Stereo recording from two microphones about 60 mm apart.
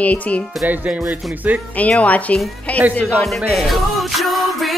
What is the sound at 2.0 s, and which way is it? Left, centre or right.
Speech, left.